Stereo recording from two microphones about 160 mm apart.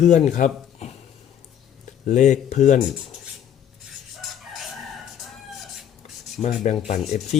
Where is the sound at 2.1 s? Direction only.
50° left (ahead or behind).